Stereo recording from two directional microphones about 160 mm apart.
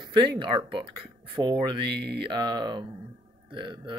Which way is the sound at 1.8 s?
90° right.